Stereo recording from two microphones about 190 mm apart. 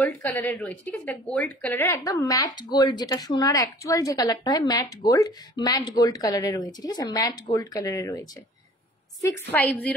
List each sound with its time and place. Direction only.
0.0 s a woman's voice: 10° left (ahead or behind)